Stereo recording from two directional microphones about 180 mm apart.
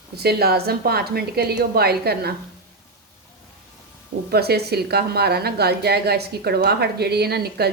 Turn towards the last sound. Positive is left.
turn(degrees=-60)  # may be behind; listen again after turning